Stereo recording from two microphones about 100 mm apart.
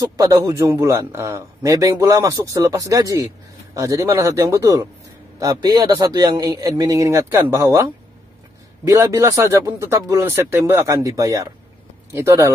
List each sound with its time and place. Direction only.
0.2 s a man's voice: 30° right (ahead or behind)
8.8 s a man's voice: 25° right (ahead or behind)